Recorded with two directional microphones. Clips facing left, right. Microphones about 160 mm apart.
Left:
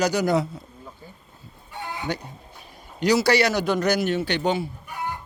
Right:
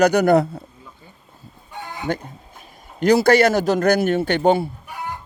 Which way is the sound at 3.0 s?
50° right (ahead or behind).